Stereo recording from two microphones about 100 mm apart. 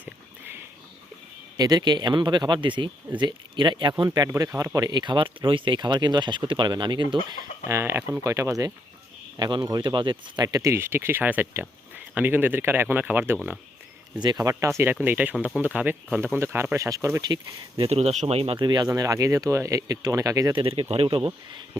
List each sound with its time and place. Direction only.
1.5 s speech: 40° right (ahead or behind)
4.5 s speech: 35° right (ahead or behind); by 7.2 s 50° right (ahead or behind)
7.7 s speech: 25° right (ahead or behind)
9.4 s speech: 50° right (ahead or behind)
10.4 s speech: 35° right (ahead or behind)
14.2 s speech: 40° right (ahead or behind)
15.0 s speech: 15° right (ahead or behind); by 17.8 s 45° right (ahead or behind)
17.8 s speech: 90° right
18.6 s speech: 45° right (ahead or behind)
18.9 s speech: 35° right (ahead or behind)
20.5 s speech: 60° right (ahead or behind)